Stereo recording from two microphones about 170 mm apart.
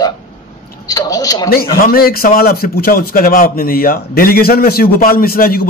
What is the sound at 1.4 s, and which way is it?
A man's voice, 60° left (ahead or behind).